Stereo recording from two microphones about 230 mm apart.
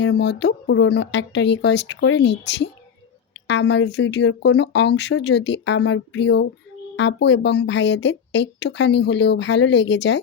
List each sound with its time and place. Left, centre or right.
0.0 s speech: left
3.4 s speech: left